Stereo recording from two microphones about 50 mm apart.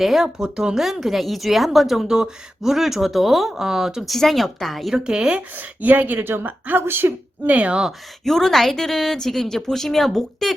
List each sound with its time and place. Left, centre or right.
0.0 s a woman's voice: centre
0.3 s speech: centre
0.9 s a woman's voice: centre
4.1 s a woman's voice: centre
4.9 s speech: centre
5.4 s a woman's voice: right
7.4 s speech: right
8.2 s a woman's voice: centre